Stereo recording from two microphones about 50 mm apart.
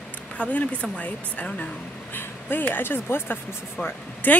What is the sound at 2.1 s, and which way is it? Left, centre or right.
Speech, left.